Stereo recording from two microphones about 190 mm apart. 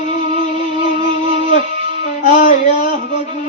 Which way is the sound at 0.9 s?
30° right (ahead or behind).